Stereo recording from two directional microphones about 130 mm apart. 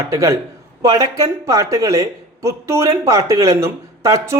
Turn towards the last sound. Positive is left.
turn(degrees=-25)  # may be behind; listen again after turning